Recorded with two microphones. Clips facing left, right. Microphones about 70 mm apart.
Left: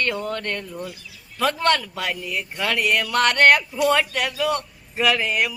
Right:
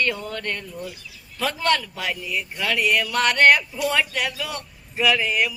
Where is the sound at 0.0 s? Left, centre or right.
Left.